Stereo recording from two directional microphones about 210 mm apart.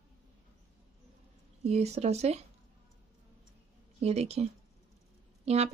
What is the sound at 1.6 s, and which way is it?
Speech, 30° right (ahead or behind).